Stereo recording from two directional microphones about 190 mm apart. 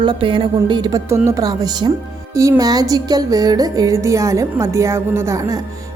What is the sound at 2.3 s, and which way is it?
Music, 15° right (ahead or behind).